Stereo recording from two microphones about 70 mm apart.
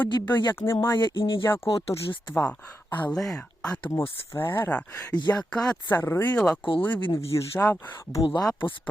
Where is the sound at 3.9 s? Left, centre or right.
Left.